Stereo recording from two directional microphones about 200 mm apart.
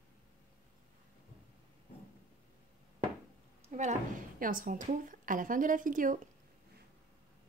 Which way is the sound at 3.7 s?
35° right (ahead or behind).